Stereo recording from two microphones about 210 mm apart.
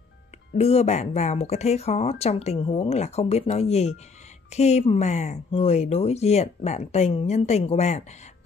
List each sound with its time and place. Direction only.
0.6 s speech: 30° left (ahead or behind)